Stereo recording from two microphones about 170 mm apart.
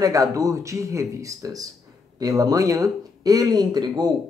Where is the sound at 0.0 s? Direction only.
20° right (ahead or behind).